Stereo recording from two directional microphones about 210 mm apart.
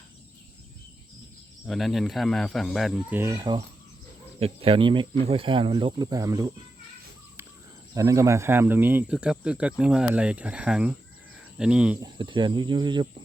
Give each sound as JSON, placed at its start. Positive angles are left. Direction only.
{"t": 1.6, "sound": "speech", "side_deg": 0}
{"t": 7.9, "sound": "speech", "side_deg": -15}
{"t": 12.0, "sound": "speech", "side_deg": -20}